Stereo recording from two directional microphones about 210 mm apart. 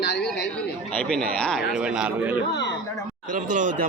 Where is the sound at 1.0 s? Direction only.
5° left (ahead or behind).